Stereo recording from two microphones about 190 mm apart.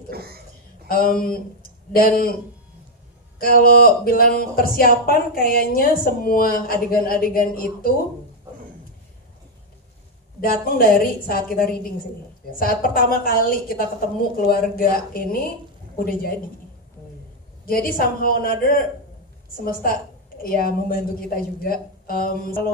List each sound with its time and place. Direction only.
0.1 s a woman's voice: 55° right (ahead or behind)
0.8 s speech: 50° left (ahead or behind)
3.3 s speech: 50° left (ahead or behind)
10.4 s speech: 50° left (ahead or behind)
17.6 s speech: 50° left (ahead or behind)